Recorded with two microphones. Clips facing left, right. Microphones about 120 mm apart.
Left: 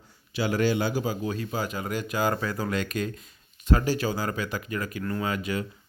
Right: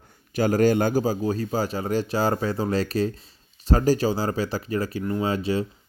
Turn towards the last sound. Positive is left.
turn(degrees=-30)  # may be behind; listen again after turning